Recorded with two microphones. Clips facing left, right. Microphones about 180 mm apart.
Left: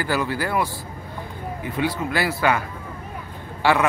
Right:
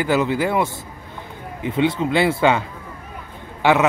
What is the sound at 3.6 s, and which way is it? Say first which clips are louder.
Speech: right 3 dB; 20° right (ahead or behind).